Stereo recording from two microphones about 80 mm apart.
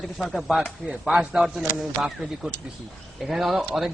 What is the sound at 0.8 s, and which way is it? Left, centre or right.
Speech, centre.